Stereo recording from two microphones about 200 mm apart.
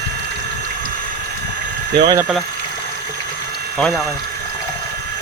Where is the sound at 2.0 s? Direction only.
20° right (ahead or behind).